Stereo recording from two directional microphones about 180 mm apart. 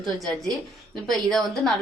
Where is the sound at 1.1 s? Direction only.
Centre (ahead or behind).